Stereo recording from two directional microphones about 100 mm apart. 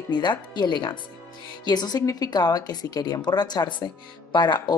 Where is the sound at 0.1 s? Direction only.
50° left (ahead or behind).